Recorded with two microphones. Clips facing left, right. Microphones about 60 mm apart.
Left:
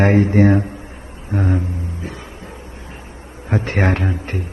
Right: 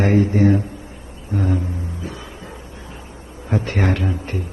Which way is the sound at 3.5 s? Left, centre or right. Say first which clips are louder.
Left 2 dB; left.